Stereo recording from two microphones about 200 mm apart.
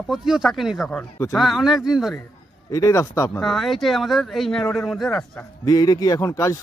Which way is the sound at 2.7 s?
15° left (ahead or behind).